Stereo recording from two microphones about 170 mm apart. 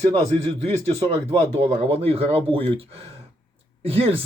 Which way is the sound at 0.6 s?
40° right (ahead or behind).